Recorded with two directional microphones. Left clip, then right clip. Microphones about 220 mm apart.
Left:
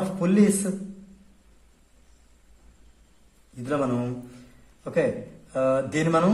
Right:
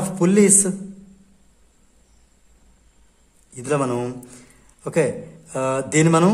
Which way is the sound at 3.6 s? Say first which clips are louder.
Right 5 dB; 50° right (ahead or behind).